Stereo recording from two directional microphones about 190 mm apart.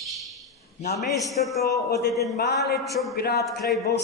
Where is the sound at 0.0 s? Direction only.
Centre (ahead or behind).